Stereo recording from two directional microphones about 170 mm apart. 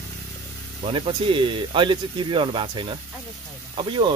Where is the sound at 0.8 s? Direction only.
30° right (ahead or behind).